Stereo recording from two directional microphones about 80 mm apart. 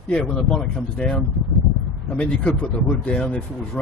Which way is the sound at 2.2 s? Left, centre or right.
Centre.